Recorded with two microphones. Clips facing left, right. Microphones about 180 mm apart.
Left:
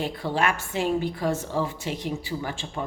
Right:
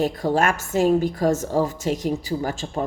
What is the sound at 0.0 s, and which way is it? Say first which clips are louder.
A woman's voice: right 5 dB; 45° right (ahead or behind).